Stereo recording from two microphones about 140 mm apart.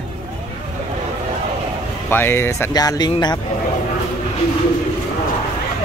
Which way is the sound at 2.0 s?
15° left (ahead or behind).